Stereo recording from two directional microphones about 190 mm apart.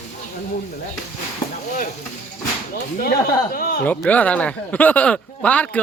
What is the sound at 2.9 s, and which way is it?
Speech, 50° left (ahead or behind).